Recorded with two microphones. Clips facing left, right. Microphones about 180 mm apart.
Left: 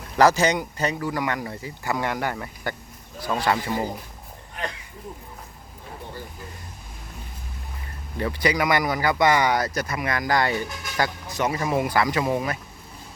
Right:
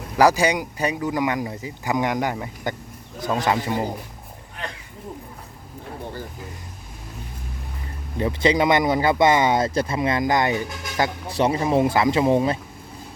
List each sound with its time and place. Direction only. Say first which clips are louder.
0.2 s speech: right 1 dB; 10° right (ahead or behind)
8.2 s speech: right 4 dB; 25° right (ahead or behind)
11.3 s speech: right 4 dB; 30° right (ahead or behind)